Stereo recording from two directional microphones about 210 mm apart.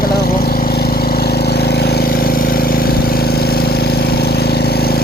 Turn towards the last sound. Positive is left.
turn(degrees=50)  # may be behind; listen again after turning